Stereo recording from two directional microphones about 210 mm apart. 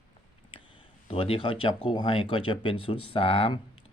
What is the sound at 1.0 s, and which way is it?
Speech, 25° left (ahead or behind).